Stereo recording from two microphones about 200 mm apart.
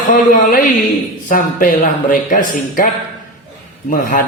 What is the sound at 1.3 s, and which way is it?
A man's voice, 40° left (ahead or behind).